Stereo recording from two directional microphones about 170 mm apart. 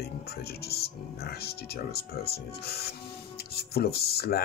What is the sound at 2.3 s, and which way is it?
Speech, 70° left (ahead or behind).